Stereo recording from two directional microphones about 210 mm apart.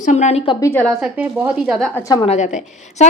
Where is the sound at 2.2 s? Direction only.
35° left (ahead or behind).